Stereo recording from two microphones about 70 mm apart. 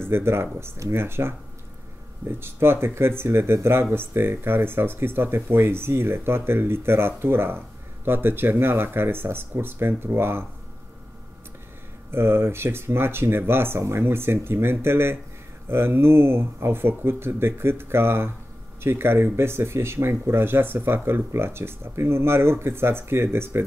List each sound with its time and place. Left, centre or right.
0.1 s speech: right
12.1 s speech: right